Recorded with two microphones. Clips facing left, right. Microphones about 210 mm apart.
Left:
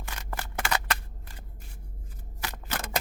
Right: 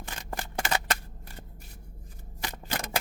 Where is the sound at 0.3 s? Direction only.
25° right (ahead or behind).